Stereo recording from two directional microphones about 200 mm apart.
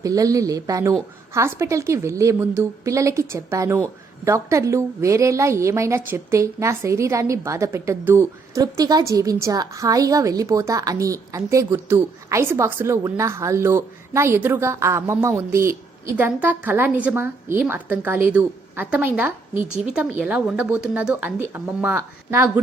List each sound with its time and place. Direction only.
0.0 s a woman's voice: 15° right (ahead or behind)